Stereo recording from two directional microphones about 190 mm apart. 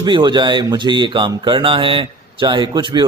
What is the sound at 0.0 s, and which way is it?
Speech, 25° right (ahead or behind).